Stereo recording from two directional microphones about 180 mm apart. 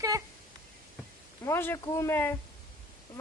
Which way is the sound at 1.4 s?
15° left (ahead or behind).